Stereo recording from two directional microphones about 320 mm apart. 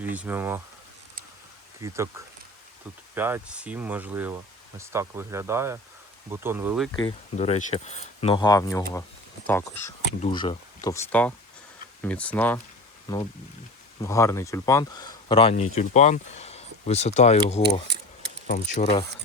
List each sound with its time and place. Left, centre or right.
0.2 s speech: centre
1.8 s speech: centre
6.9 s speech: centre